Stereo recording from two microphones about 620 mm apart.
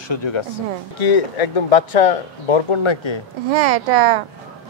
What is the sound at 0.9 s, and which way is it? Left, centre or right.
Speech, left.